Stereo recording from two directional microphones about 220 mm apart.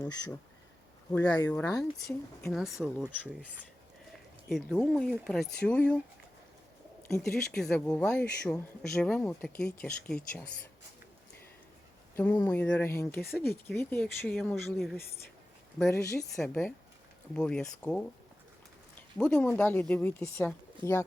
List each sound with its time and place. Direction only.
0.0 s speech: 15° left (ahead or behind)
1.5 s speech: 5° left (ahead or behind)
4.4 s speech: centre (ahead or behind)
7.1 s speech: centre (ahead or behind)
12.1 s speech: 5° left (ahead or behind)
15.9 s speech: 15° left (ahead or behind)
16.3 s speech: 5° left (ahead or behind)
19.2 s speech: 5° left (ahead or behind)